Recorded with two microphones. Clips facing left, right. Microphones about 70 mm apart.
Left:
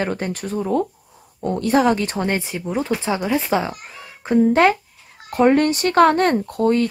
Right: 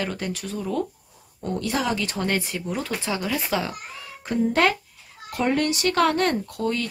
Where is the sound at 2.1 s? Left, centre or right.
Left.